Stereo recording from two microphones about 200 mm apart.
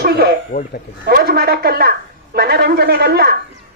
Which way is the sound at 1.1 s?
50° right (ahead or behind).